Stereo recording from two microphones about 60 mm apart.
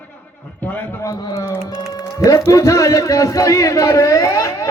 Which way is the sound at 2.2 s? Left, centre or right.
Left.